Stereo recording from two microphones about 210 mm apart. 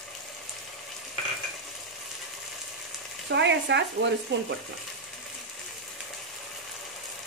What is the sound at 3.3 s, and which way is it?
Frying, 55° right (ahead or behind).